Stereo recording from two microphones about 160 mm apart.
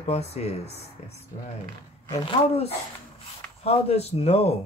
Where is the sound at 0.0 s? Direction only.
40° left (ahead or behind).